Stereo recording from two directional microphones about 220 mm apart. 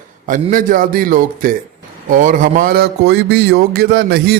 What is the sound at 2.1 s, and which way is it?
Speech, 35° right (ahead or behind).